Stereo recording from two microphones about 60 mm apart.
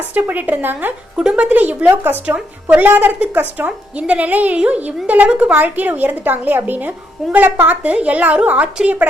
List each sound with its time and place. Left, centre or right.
0.1 s a woman's voice: right
1.1 s speech: centre
1.5 s a woman's voice: right
3.7 s a woman's voice: right
5.3 s speech: centre
5.5 s a woman's voice: right